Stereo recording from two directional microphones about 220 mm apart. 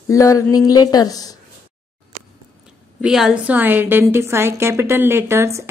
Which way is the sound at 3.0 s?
5° right (ahead or behind).